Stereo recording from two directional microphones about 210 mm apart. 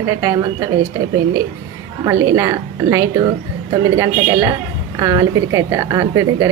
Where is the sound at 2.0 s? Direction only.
15° right (ahead or behind).